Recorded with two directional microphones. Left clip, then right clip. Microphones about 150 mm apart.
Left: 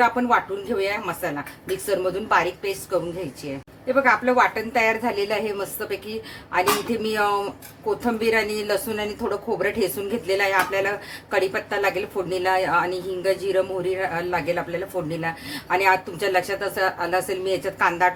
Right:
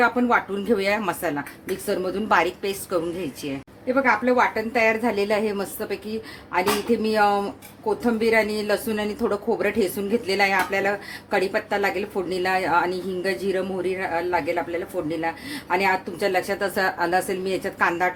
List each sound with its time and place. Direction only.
0.0 s speech: 30° right (ahead or behind)
0.8 s speech: 50° right (ahead or behind)
1.9 s a woman's voice: 40° right (ahead or behind)